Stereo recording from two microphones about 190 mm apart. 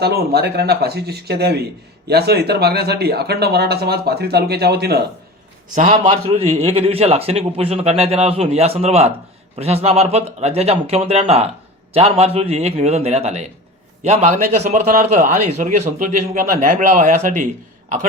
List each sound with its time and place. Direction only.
0.0 s speech: 55° right (ahead or behind)
5.7 s a man's voice: 40° right (ahead or behind)